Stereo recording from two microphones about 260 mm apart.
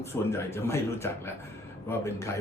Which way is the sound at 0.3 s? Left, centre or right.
Centre.